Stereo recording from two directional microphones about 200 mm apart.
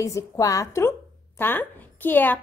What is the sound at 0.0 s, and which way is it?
A woman's voice, 15° left (ahead or behind).